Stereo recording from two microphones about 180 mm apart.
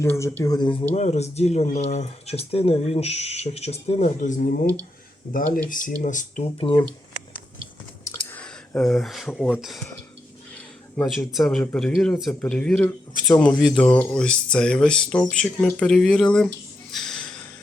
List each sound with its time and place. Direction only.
0.0 s speech: 15° left (ahead or behind); by 6.4 s 45° left (ahead or behind)
6.6 s speech: 30° left (ahead or behind)
8.3 s speech: 5° left (ahead or behind)
10.9 s speech: centre (ahead or behind)
16.9 s a sound: centre (ahead or behind)